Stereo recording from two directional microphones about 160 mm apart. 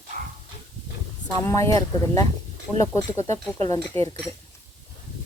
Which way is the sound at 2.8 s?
20° left (ahead or behind).